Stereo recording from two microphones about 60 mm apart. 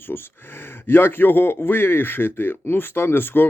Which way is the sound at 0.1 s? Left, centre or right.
Left.